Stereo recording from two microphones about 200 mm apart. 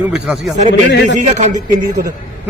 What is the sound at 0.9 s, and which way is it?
Speech, 60° left (ahead or behind).